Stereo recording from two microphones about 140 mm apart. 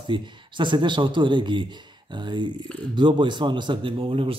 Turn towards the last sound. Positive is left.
turn(degrees=-40)  # may be behind; listen again after turning